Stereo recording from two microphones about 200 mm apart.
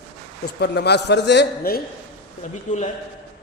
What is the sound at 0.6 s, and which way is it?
A man's voice, 55° left (ahead or behind).